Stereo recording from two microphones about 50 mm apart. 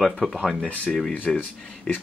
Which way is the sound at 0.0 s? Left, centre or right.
Centre.